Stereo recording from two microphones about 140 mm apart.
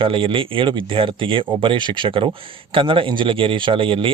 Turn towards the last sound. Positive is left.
turn(degrees=-40)  # may be behind; listen again after turning